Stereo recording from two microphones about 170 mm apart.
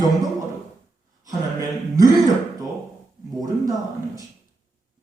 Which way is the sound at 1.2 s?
20° right (ahead or behind).